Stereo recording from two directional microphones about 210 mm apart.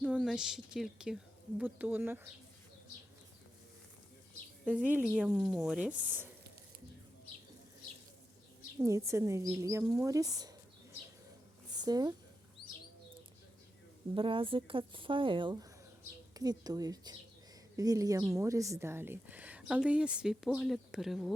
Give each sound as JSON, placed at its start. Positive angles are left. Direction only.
{"t": 0.0, "sound": "speech", "side_deg": -5}
{"t": 4.6, "sound": "a woman's voice", "side_deg": -5}
{"t": 8.8, "sound": "a woman's voice", "side_deg": -15}
{"t": 11.7, "sound": "a sound", "side_deg": -20}
{"t": 14.2, "sound": "a woman's voice", "side_deg": -25}